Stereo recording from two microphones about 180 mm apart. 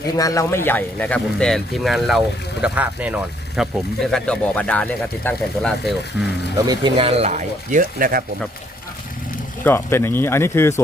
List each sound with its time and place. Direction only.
0.2 s speech: 20° left (ahead or behind); by 6.0 s centre (ahead or behind)
6.7 s speech: 25° right (ahead or behind); by 8.2 s 55° right (ahead or behind)
9.6 s speech: 15° left (ahead or behind)